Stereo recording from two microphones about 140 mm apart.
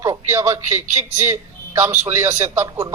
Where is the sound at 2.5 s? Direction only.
25° right (ahead or behind).